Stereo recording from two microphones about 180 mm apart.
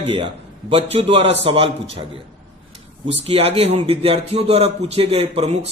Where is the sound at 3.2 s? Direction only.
35° right (ahead or behind).